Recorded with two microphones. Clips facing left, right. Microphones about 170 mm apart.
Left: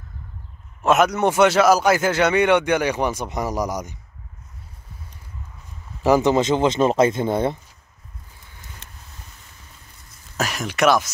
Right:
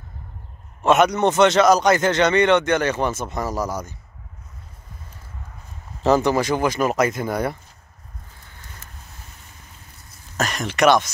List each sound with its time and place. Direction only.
0.8 s a man's voice: centre (ahead or behind)
6.0 s speech: 15° left (ahead or behind)
10.3 s speech: 5° left (ahead or behind)